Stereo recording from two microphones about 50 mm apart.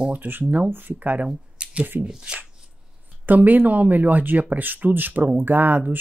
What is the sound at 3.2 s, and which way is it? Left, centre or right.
Speech, right.